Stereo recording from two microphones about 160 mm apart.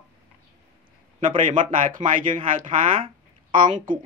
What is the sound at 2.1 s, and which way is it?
Speech, 55° right (ahead or behind).